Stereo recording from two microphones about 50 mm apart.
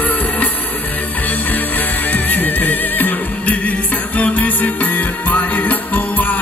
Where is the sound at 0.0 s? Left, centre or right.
Left.